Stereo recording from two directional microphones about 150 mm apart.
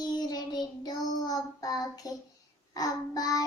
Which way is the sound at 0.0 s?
25° left (ahead or behind).